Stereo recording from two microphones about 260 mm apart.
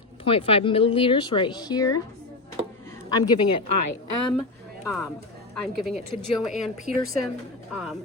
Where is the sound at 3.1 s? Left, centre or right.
Centre.